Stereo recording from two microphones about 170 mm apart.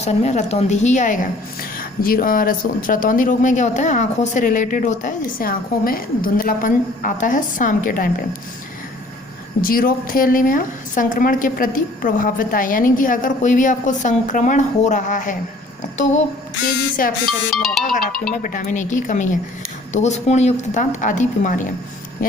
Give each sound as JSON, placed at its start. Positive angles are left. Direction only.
{"t": 0.0, "sound": "speech", "side_deg": 40}
{"t": 9.6, "sound": "speech", "side_deg": 60}
{"t": 17.0, "sound": "music", "side_deg": 55}
{"t": 17.5, "sound": "ringtone", "side_deg": 0}
{"t": 18.4, "sound": "speech", "side_deg": 50}